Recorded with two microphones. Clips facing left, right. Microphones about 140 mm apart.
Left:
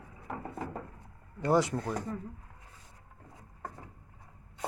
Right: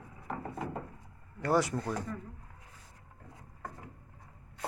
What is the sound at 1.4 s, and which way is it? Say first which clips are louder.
Speech: left 2 dB; 20° left (ahead or behind).